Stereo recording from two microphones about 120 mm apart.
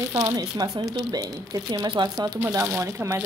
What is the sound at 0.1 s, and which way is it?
Speech, 30° right (ahead or behind).